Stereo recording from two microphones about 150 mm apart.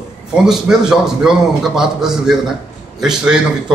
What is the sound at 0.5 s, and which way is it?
Speech, 5° right (ahead or behind).